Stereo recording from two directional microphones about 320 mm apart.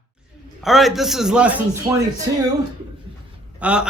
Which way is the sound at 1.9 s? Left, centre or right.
Centre.